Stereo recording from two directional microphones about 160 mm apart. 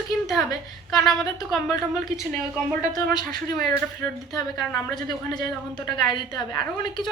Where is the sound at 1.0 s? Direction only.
Centre (ahead or behind).